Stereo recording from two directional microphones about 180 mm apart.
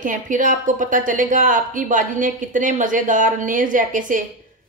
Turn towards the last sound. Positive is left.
turn(degrees=-50)  # may be behind; listen again after turning